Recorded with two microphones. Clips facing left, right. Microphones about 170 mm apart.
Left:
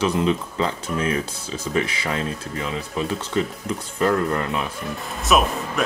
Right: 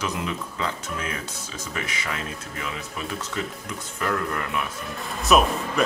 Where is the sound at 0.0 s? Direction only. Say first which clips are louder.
Left 8 dB; 30° left (ahead or behind).